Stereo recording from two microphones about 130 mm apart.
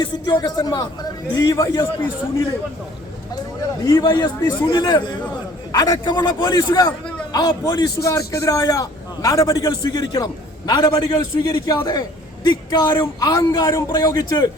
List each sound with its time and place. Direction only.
0.0 s a man's voice: 35° left (ahead or behind)
3.6 s a man's voice: 30° left (ahead or behind)